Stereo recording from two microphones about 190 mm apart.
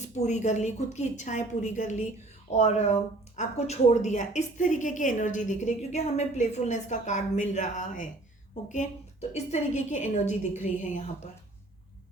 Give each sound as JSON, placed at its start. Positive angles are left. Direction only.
{"t": 0.2, "sound": "speech", "side_deg": 40}
{"t": 9.3, "sound": "speech", "side_deg": 40}